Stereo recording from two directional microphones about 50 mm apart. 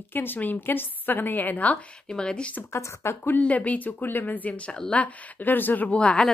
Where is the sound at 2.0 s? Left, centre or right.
Centre.